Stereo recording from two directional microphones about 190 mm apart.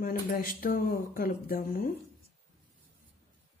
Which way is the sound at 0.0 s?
50° left (ahead or behind).